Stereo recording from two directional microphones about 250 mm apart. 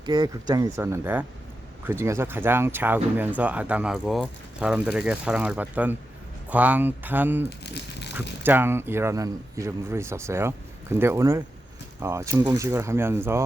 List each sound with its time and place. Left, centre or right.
0.0 s speech: centre
7.6 s crumpling: left
8.4 s speech: centre